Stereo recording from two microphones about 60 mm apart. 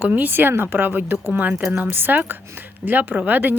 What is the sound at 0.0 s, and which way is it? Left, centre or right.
Speech, right.